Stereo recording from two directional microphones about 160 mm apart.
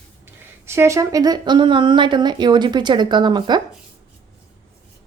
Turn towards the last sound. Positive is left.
turn(degrees=-25)  # may be behind; listen again after turning